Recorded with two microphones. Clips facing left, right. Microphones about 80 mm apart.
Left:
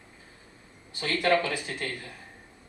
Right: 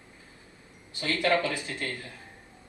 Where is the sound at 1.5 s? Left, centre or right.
Left.